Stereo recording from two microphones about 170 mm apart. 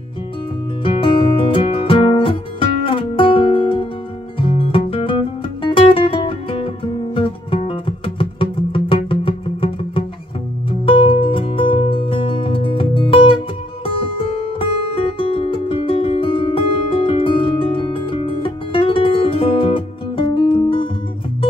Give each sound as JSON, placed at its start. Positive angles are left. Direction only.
{"t": 0.8, "sound": "music", "side_deg": 30}